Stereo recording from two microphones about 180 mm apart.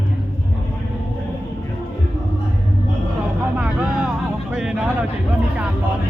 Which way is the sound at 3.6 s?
5° right (ahead or behind).